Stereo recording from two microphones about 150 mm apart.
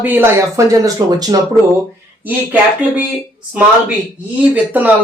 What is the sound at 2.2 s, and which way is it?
Speech, 10° right (ahead or behind).